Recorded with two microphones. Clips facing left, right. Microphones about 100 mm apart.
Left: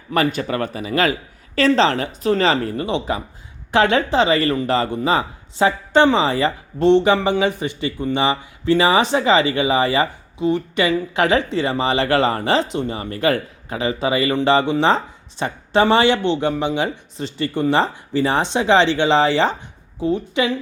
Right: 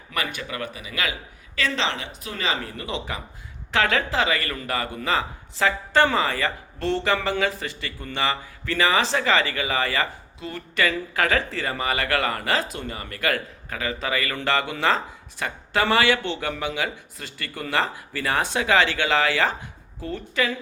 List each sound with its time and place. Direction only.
0.3 s speech: 40° left (ahead or behind); by 20.6 s 20° left (ahead or behind)